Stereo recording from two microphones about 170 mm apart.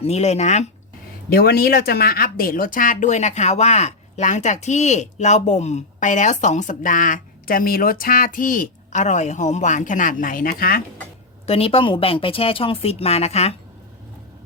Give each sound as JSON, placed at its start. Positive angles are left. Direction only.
{"t": 0.0, "sound": "speech", "side_deg": 40}
{"t": 1.3, "sound": "speech", "side_deg": 65}
{"t": 11.4, "sound": "speech", "side_deg": 35}